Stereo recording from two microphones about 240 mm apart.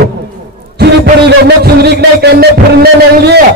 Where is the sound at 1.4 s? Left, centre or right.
Right.